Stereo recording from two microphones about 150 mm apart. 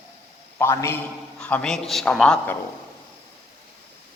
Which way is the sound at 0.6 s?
15° left (ahead or behind).